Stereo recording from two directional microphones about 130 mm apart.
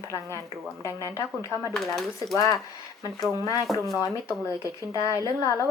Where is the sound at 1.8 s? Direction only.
Centre (ahead or behind).